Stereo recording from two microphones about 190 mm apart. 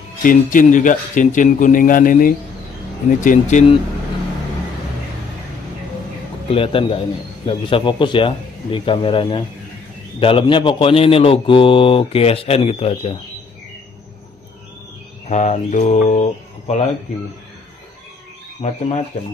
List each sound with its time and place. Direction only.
0.2 s a man's voice: 45° left (ahead or behind)
6.5 s speech: 30° left (ahead or behind)
15.2 s speech: 35° left (ahead or behind)
18.6 s speech: 35° left (ahead or behind)